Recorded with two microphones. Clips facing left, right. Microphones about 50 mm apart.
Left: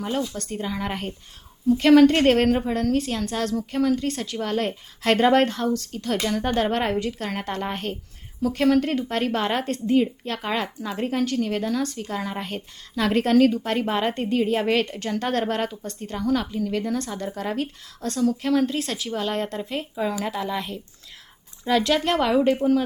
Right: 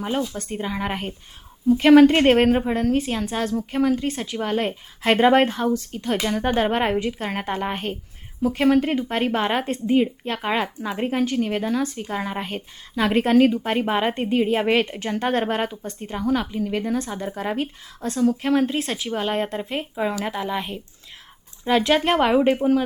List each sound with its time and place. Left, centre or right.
0.0 s speech: centre